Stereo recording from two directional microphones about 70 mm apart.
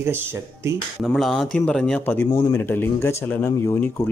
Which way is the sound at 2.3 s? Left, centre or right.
Left.